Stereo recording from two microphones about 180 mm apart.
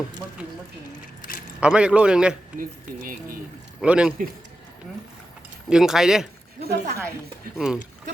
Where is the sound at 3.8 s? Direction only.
5° right (ahead or behind).